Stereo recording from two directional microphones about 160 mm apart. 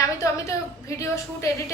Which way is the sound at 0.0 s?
20° left (ahead or behind).